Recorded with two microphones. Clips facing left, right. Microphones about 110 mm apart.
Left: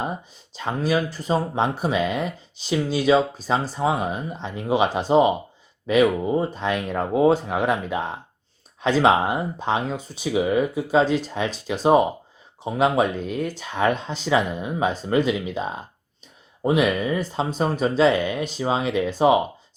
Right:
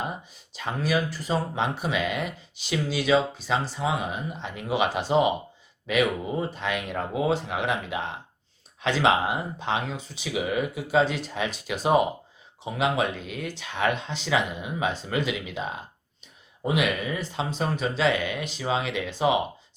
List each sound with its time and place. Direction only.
0.5 s speech: 30° left (ahead or behind)